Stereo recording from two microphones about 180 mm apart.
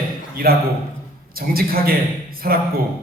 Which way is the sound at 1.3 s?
55° right (ahead or behind).